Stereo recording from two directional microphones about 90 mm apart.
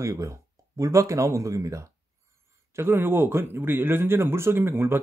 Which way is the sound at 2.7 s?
25° right (ahead or behind).